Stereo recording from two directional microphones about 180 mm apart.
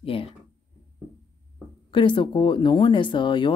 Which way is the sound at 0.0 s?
30° left (ahead or behind).